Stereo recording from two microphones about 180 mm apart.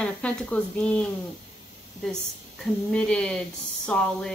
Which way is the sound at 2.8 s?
5° left (ahead or behind).